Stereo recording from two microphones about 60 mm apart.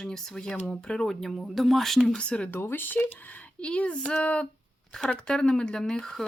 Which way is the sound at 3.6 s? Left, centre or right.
Centre.